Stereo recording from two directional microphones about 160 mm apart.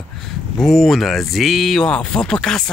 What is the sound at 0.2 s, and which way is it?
Speech, centre (ahead or behind).